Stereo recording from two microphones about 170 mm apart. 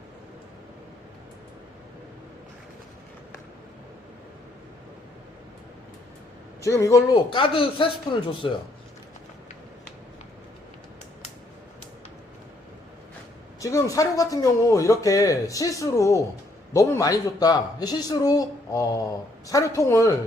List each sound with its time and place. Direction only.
6.6 s speech: 20° left (ahead or behind)
13.6 s speech: 20° left (ahead or behind)